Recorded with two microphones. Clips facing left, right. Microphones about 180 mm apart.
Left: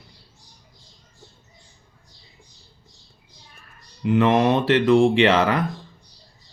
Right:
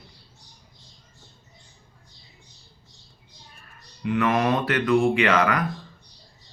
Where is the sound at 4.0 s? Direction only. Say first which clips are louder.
Left 5 dB; 25° left (ahead or behind).